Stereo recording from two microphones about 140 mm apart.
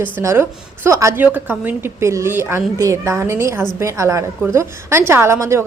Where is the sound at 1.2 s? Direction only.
10° right (ahead or behind).